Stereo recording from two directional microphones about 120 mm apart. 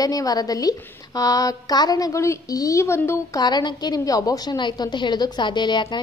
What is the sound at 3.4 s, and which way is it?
A woman's voice, 35° left (ahead or behind).